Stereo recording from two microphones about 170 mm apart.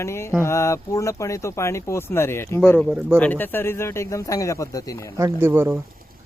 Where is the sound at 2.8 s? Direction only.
5° right (ahead or behind).